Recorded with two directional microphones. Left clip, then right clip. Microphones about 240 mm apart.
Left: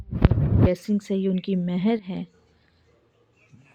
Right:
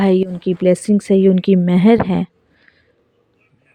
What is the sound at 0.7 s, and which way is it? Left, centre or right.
Speech, right.